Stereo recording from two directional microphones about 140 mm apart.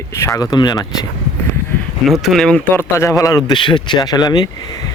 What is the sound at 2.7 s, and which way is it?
Speech, 20° left (ahead or behind).